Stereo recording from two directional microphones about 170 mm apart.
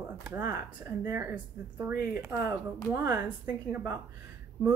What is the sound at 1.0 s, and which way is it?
Speech, 15° right (ahead or behind).